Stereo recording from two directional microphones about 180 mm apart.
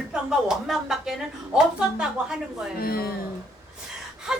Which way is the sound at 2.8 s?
55° left (ahead or behind).